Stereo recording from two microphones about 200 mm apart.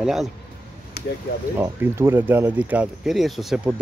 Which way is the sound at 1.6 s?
15° right (ahead or behind).